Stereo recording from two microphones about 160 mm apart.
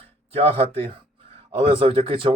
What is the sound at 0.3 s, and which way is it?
Speech, 35° right (ahead or behind).